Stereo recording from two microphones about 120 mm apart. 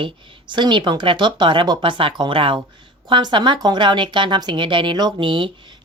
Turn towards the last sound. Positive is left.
turn(degrees=-45)  # may be behind; listen again after turning